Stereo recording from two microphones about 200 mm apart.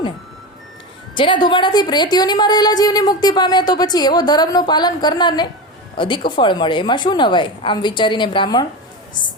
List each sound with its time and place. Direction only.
1.1 s a woman's voice: 25° left (ahead or behind)